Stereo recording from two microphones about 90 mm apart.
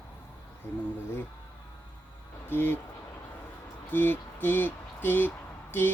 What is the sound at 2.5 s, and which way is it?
Speech, 25° left (ahead or behind).